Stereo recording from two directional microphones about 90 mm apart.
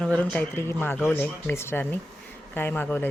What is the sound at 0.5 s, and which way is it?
Speech, 25° left (ahead or behind).